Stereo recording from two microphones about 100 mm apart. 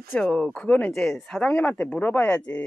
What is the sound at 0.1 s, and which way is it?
Speech, 5° left (ahead or behind).